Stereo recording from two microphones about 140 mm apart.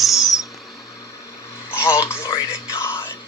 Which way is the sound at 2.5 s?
20° left (ahead or behind).